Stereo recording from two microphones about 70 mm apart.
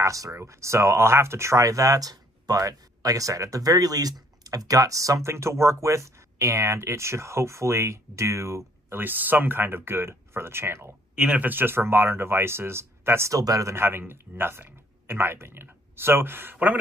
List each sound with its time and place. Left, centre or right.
0.0 s speech: right
5.3 s speech: right
8.9 s speech: right
11.1 s speech: centre
11.4 s speech: right
13.3 s speech: right
13.7 s speech: right